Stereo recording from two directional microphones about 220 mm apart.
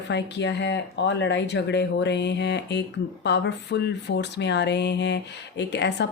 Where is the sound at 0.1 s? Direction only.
50° left (ahead or behind).